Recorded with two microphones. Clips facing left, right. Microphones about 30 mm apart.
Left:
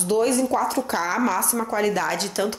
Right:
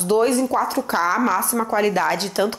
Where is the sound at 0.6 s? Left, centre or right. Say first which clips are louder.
Right 3 dB; centre.